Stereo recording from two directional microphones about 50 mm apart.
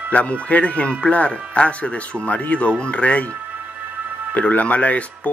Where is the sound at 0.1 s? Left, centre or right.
Left.